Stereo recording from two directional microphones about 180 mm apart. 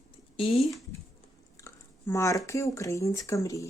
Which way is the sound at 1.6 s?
15° left (ahead or behind).